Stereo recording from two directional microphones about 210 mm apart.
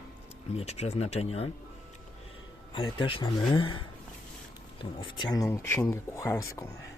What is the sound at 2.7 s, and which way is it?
Speech, 25° left (ahead or behind).